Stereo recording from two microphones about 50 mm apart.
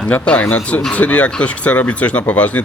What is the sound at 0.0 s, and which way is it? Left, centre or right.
Speech, left.